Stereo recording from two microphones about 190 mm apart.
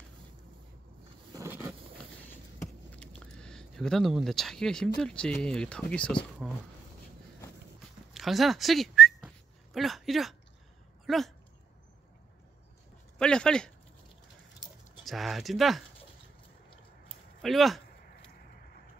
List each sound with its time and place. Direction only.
1.3 s a sound: 15° right (ahead or behind)
2.9 s speech: 5° left (ahead or behind)
8.1 s whistling: centre (ahead or behind)
11.1 s speech: centre (ahead or behind)
13.2 s speech: 5° left (ahead or behind)
15.0 s speech: centre (ahead or behind)
17.4 s speech: centre (ahead or behind)